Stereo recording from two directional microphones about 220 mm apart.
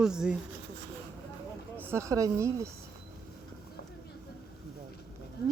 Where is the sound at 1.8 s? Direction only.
10° right (ahead or behind).